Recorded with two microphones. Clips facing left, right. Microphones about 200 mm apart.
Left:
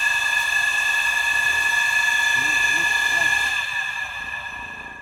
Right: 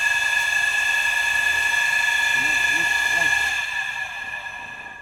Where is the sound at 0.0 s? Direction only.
20° right (ahead or behind).